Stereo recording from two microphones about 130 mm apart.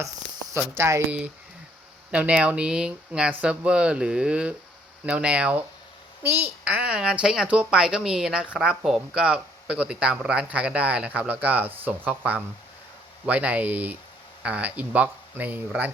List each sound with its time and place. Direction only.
0.0 s a man's voice: 25° right (ahead or behind)